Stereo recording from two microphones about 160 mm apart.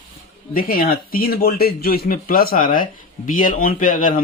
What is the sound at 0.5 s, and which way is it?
Speech, 70° left (ahead or behind).